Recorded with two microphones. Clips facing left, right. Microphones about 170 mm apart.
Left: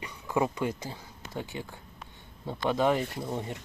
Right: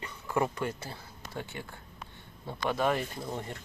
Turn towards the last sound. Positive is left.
turn(degrees=15)  # may be behind; listen again after turning